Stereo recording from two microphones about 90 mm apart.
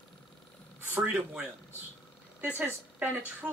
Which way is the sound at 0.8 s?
15° right (ahead or behind).